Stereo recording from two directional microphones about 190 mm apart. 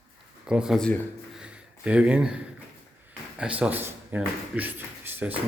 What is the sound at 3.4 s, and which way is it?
Speech, 5° right (ahead or behind).